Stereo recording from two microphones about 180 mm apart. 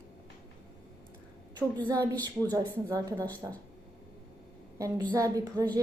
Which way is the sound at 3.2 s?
10° left (ahead or behind).